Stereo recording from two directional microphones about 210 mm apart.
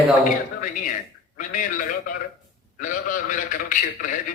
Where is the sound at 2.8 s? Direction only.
40° left (ahead or behind).